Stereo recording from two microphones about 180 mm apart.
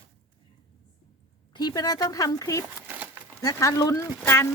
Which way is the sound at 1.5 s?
20° left (ahead or behind).